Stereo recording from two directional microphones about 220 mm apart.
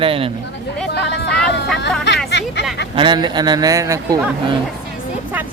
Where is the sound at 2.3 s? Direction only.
50° left (ahead or behind).